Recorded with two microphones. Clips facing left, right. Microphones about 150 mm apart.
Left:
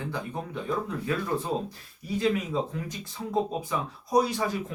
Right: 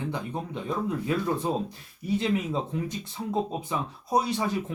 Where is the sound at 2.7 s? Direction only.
20° right (ahead or behind).